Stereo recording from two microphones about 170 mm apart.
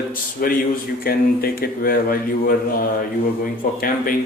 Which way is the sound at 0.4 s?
55° left (ahead or behind).